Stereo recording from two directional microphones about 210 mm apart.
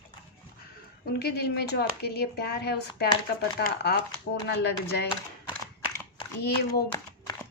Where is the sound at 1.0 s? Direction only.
50° left (ahead or behind).